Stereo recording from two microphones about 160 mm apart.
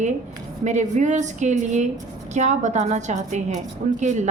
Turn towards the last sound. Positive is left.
turn(degrees=-50)  # may be behind; listen again after turning